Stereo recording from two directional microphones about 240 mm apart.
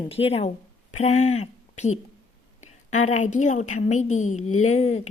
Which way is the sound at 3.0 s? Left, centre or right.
Left.